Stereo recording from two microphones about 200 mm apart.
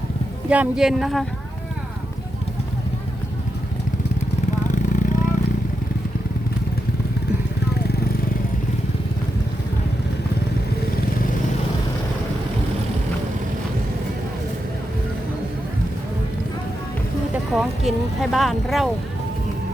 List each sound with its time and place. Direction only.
0.5 s speech: 5° right (ahead or behind)
4.7 s vehicle: 40° left (ahead or behind)
17.5 s speech: centre (ahead or behind)